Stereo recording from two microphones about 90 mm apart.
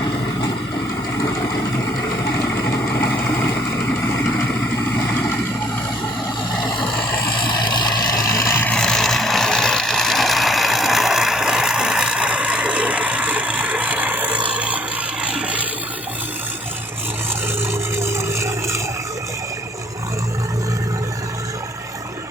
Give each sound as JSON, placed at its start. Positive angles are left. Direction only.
{"t": 6.7, "sound": "vehicle", "side_deg": 60}
{"t": 8.4, "sound": "vehicle", "side_deg": 30}
{"t": 8.7, "sound": "a sound", "side_deg": 5}
{"t": 17.9, "sound": "vehicle", "side_deg": -30}